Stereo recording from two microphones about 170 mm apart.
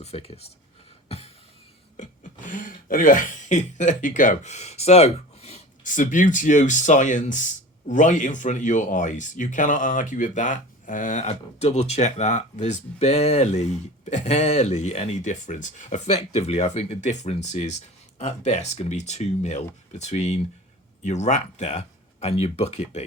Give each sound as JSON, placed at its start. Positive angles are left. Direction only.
{"t": 0.0, "sound": "speech", "side_deg": 35}
{"t": 1.0, "sound": "a sound", "side_deg": 35}
{"t": 2.0, "sound": "speech", "side_deg": 50}